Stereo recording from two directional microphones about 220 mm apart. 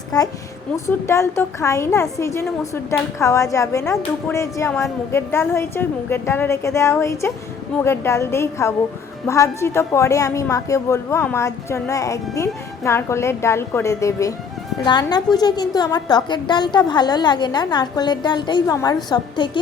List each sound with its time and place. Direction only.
0.9 s a woman's voice: 10° left (ahead or behind)